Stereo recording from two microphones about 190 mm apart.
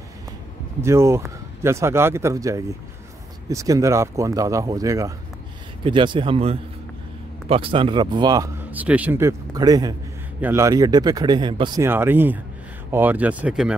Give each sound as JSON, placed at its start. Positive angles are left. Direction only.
{"t": 0.7, "sound": "speech", "side_deg": -15}
{"t": 11.8, "sound": "speech", "side_deg": -10}